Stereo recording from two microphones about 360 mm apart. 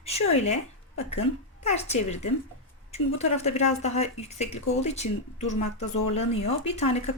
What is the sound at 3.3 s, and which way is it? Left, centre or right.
Speech, centre.